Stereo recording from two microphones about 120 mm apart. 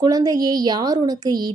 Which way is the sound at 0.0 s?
35° right (ahead or behind).